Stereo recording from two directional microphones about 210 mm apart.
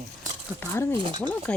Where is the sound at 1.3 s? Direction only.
5° left (ahead or behind).